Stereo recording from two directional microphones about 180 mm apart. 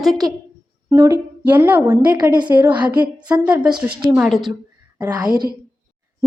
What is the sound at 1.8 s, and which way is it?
A woman's voice, 20° right (ahead or behind).